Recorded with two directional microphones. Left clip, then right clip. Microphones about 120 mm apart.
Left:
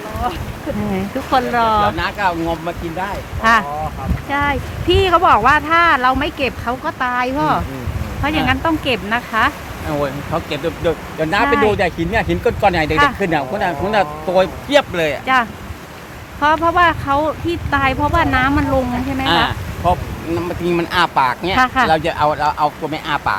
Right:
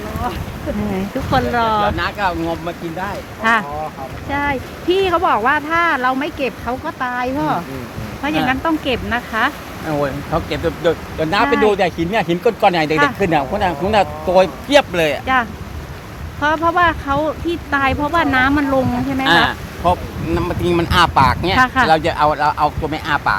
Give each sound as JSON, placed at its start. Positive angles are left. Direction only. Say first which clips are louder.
{"t": 0.9, "sound": "speech", "louder": "left 2 dB", "side_deg": 10}
{"t": 2.0, "sound": "speech", "louder": "left 1 dB", "side_deg": -10}
{"t": 3.4, "sound": "speech", "louder": "left 2 dB", "side_deg": 10}
{"t": 8.2, "sound": "speech", "louder": "left 1 dB", "side_deg": 10}
{"t": 10.0, "sound": "speech", "louder": "right 1 dB", "side_deg": -40}
{"t": 11.4, "sound": "speech", "louder": "even", "side_deg": 15}
{"t": 11.7, "sound": "speech", "louder": "right 1 dB", "side_deg": -30}
{"t": 16.4, "sound": "speech", "louder": "left 2 dB", "side_deg": 10}
{"t": 19.5, "sound": "speech", "louder": "right 1 dB", "side_deg": -45}
{"t": 21.5, "sound": "speech", "louder": "left 2 dB", "side_deg": 5}
{"t": 21.8, "sound": "speech", "louder": "right 1 dB", "side_deg": -30}